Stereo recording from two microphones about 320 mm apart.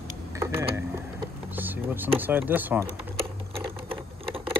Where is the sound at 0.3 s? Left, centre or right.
Centre.